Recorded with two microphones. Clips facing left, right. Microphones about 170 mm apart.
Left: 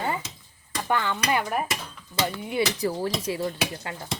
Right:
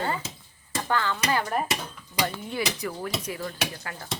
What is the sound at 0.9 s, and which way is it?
Stir, 20° left (ahead or behind).